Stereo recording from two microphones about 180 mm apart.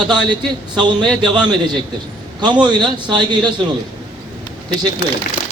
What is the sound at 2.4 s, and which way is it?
Speech, 25° right (ahead or behind).